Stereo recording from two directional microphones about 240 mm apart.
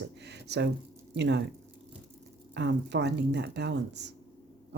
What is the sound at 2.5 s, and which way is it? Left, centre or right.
Speech, right.